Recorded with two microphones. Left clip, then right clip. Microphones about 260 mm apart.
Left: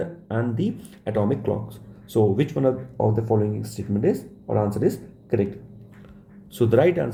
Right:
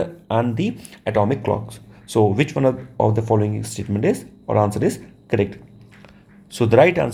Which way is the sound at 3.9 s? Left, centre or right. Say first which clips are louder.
Right 2 dB; right.